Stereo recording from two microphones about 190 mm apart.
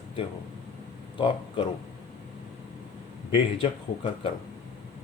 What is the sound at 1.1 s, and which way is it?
Speech, 30° left (ahead or behind).